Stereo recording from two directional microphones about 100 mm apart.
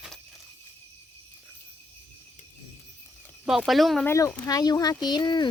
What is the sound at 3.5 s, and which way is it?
Speech, centre (ahead or behind).